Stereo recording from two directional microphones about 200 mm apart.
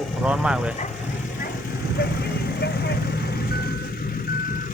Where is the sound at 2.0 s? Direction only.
50° left (ahead or behind).